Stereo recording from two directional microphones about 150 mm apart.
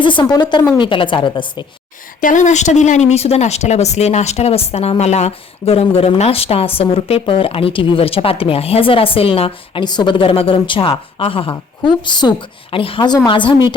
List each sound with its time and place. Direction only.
0.0 s speech: 30° left (ahead or behind)
2.2 s speech: 55° left (ahead or behind); by 13.6 s 35° left (ahead or behind)